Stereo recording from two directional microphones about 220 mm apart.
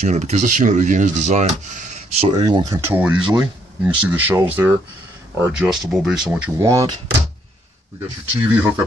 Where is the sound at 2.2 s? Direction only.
20° right (ahead or behind).